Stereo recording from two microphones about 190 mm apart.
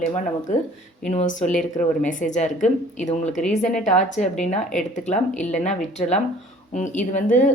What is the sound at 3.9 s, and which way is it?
Speech, 40° left (ahead or behind).